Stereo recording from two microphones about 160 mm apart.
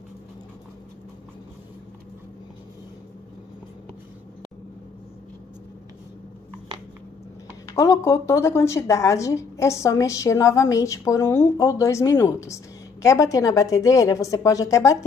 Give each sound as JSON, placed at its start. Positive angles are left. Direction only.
{"t": 7.6, "sound": "a woman's voice", "side_deg": 20}